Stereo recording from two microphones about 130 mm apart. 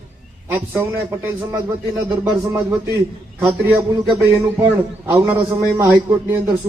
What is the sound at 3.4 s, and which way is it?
Speech, 20° right (ahead or behind).